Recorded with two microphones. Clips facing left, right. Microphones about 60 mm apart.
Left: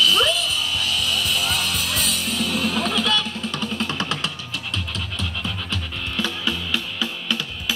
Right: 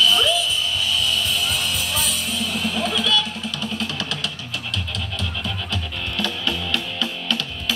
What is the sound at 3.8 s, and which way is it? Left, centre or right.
Music, left.